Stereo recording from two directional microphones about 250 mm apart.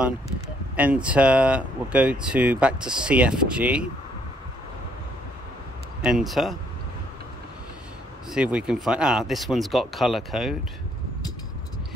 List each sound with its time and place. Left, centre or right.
0.7 s speech: centre
6.0 s speech: centre
8.3 s speech: centre